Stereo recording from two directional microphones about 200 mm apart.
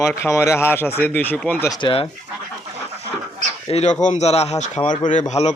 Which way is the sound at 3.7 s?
35° left (ahead or behind).